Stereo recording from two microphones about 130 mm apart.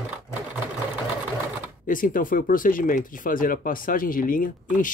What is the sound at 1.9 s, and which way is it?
Speech, 90° left.